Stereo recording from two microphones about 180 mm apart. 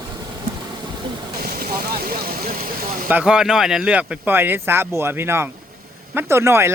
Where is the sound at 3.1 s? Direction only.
5° right (ahead or behind).